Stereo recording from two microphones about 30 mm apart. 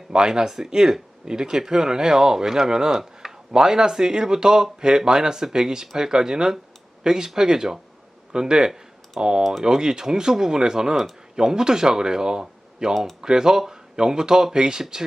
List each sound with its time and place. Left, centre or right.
0.1 s speech: right